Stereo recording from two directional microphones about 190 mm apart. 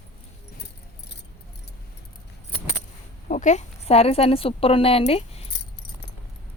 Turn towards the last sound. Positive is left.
turn(degrees=30)  # may be behind; listen again after turning